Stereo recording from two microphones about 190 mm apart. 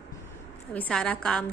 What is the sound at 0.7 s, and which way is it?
Speech, 5° left (ahead or behind).